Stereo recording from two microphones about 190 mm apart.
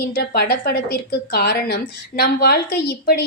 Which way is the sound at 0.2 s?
55° left (ahead or behind).